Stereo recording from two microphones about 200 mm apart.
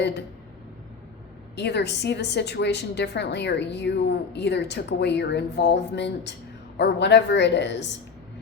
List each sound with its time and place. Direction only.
1.5 s a woman's voice: 55° left (ahead or behind)